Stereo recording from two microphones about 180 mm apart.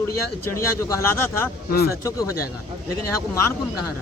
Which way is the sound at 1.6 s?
60° left (ahead or behind).